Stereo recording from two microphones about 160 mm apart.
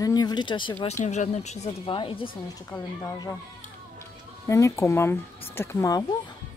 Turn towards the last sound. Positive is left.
turn(degrees=20)  # may be behind; listen again after turning